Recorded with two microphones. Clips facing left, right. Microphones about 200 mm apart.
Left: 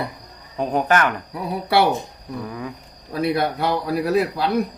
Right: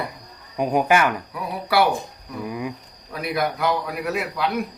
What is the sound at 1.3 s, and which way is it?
Speech, 25° left (ahead or behind).